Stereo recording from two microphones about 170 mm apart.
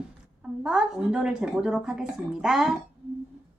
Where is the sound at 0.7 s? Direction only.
5° right (ahead or behind).